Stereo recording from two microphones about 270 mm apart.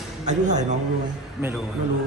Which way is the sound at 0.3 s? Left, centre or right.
Right.